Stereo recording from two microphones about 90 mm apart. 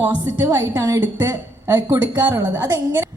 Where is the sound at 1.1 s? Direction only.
50° right (ahead or behind).